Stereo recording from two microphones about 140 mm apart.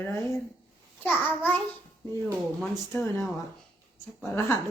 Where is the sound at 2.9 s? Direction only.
20° left (ahead or behind).